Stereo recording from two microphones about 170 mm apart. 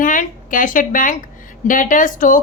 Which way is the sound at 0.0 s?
50° left (ahead or behind).